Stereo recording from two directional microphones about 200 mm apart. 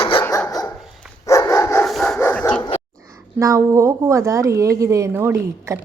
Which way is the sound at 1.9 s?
Centre (ahead or behind).